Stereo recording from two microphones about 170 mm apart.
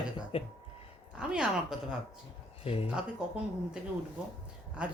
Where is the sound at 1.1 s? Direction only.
5° right (ahead or behind).